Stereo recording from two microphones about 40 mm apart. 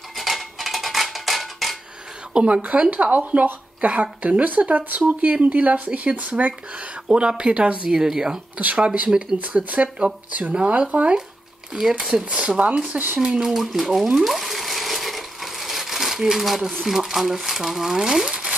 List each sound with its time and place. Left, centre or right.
0.1 s a sound: centre
2.3 s speech: right
7.9 s speech: centre
8.5 s speech: right
12.0 s speech: right
12.9 s speech: right
13.2 s speech: centre
14.2 s a sound: centre
16.8 s speech: centre